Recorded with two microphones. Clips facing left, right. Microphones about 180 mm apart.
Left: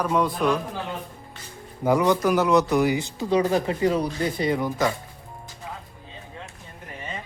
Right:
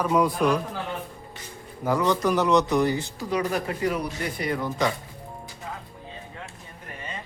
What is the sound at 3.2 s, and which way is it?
Speech, 25° left (ahead or behind).